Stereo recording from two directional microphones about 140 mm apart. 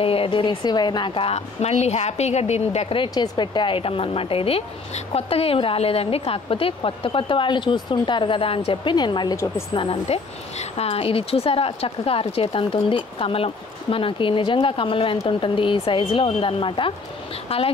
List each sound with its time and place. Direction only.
0.0 s a woman's voice: 40° left (ahead or behind)
3.0 s a woman's voice: 35° left (ahead or behind)
9.8 s a woman's voice: 45° left (ahead or behind)